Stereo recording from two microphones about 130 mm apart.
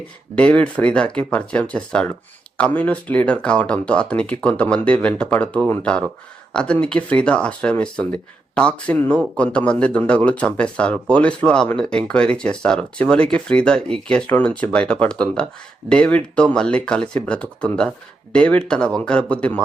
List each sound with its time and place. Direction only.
0.3 s speech: 10° left (ahead or behind)